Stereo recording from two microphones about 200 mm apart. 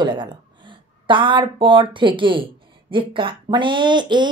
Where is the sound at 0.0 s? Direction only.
20° right (ahead or behind).